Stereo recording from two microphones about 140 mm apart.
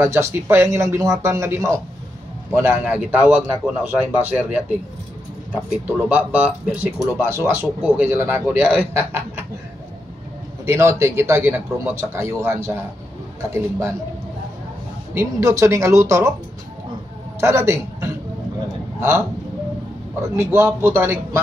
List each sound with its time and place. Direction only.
0.0 s speech: 20° right (ahead or behind)
10.6 s speech: 20° right (ahead or behind)
15.1 s speech: 20° right (ahead or behind)
17.4 s a woman's voice: 20° right (ahead or behind)